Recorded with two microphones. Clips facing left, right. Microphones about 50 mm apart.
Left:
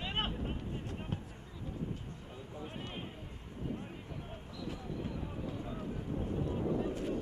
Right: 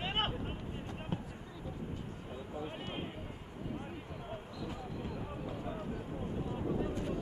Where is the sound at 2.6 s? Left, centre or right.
Centre.